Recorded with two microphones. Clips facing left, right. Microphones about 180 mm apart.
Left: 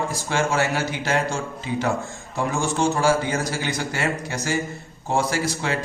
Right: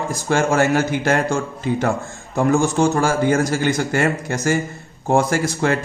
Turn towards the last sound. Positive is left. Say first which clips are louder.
# right 6 dB
turn(degrees=-50)  # may be behind; listen again after turning